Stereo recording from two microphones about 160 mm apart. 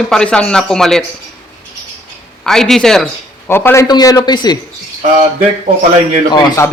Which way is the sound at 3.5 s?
15° left (ahead or behind).